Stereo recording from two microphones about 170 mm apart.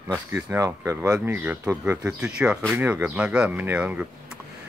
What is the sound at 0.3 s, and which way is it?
Speech, 15° right (ahead or behind).